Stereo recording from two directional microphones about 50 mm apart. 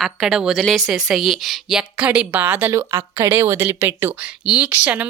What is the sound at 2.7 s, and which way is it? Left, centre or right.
Speech, right.